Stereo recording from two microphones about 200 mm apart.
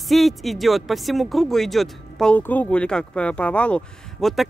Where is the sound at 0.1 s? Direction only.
Centre (ahead or behind).